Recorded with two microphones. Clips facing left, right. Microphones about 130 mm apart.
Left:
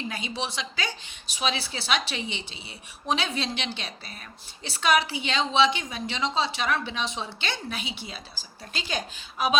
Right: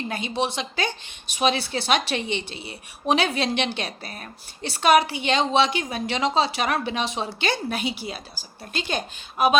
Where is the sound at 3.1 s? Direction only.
65° right (ahead or behind).